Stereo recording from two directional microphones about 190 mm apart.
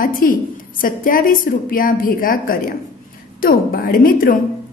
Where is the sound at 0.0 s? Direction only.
50° left (ahead or behind).